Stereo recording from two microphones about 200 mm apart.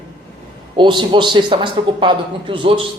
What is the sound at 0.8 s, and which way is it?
A man's voice, 25° right (ahead or behind).